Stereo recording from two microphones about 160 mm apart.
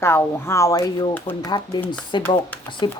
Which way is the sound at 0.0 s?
15° left (ahead or behind).